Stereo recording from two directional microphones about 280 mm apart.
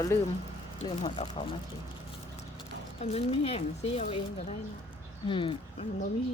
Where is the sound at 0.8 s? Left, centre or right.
Centre.